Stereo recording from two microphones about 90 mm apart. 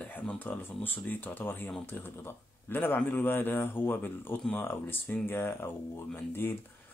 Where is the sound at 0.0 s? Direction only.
15° left (ahead or behind).